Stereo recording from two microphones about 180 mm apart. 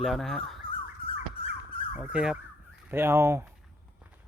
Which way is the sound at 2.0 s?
5° right (ahead or behind).